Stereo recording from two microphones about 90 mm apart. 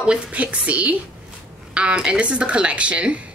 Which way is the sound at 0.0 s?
10° right (ahead or behind).